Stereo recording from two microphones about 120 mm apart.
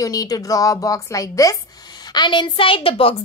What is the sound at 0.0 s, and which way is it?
A woman's voice, 30° left (ahead or behind).